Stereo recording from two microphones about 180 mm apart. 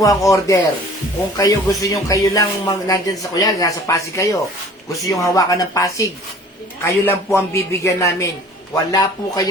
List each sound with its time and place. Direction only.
0.0 s a man's voice: 20° left (ahead or behind)